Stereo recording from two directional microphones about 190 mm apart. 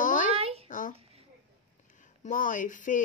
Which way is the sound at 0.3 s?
30° right (ahead or behind).